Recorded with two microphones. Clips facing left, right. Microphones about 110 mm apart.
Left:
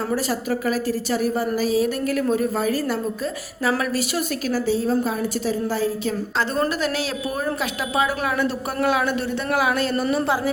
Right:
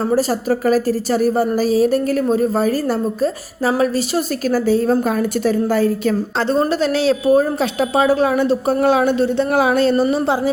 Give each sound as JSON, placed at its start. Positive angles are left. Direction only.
{"t": 0.1, "sound": "a woman's voice", "side_deg": -35}
{"t": 4.5, "sound": "a woman's voice", "side_deg": -50}
{"t": 6.5, "sound": "a woman's voice", "side_deg": -30}